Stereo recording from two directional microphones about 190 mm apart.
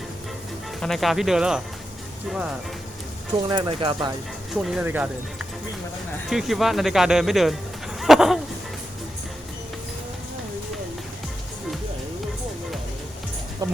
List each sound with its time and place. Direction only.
0.8 s speech: centre (ahead or behind)
3.5 s speech: 25° right (ahead or behind)
4.5 s speech: 5° right (ahead or behind)